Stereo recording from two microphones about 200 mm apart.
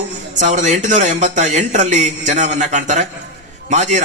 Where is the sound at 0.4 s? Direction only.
35° right (ahead or behind).